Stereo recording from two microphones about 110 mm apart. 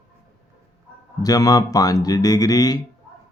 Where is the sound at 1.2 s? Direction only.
35° left (ahead or behind).